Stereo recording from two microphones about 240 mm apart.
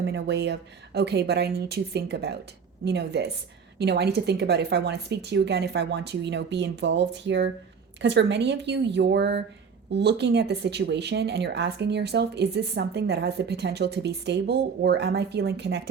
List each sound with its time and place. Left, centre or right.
0.0 s speech: right